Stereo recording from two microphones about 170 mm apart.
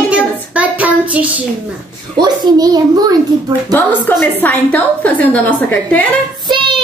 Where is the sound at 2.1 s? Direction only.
25° right (ahead or behind).